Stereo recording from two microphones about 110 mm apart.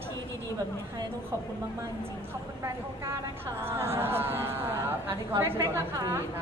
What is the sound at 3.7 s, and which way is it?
A woman's voice, 20° right (ahead or behind).